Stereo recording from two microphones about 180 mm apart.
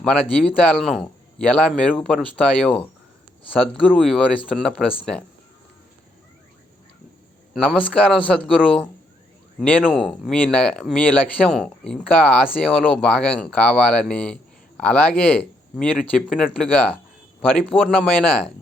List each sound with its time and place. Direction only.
0.0 s speech: 5° left (ahead or behind)
7.5 s speech: 5° left (ahead or behind)